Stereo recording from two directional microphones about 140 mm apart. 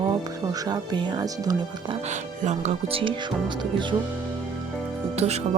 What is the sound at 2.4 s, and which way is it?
Speech, 55° right (ahead or behind).